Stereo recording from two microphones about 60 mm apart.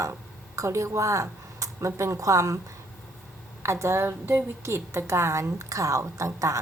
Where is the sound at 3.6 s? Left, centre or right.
Right.